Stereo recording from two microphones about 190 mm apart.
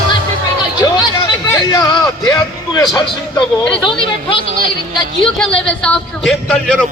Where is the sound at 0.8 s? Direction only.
20° left (ahead or behind).